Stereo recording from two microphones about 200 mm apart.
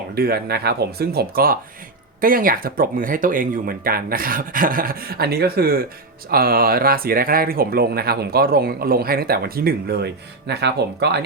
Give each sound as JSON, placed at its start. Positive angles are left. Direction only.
{"t": 0.1, "sound": "speech", "side_deg": -50}